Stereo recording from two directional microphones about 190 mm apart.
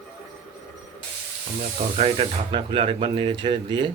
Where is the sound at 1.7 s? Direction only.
35° right (ahead or behind).